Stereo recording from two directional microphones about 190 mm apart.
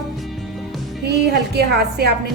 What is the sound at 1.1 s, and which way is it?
A woman's voice, 60° right (ahead or behind).